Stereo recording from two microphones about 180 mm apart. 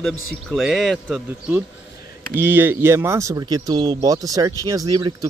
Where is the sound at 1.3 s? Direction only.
10° right (ahead or behind).